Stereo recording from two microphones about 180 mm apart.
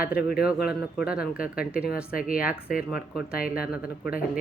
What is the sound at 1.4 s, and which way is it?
Speech, 55° left (ahead or behind).